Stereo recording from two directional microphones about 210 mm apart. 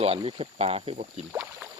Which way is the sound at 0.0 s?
30° right (ahead or behind).